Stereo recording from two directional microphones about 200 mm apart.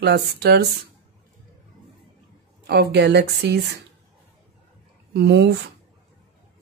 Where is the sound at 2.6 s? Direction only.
55° right (ahead or behind).